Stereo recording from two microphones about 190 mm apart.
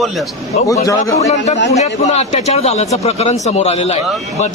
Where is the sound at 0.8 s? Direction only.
15° left (ahead or behind).